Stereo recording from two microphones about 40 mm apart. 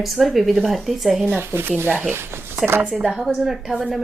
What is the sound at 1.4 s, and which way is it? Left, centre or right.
Speech, right.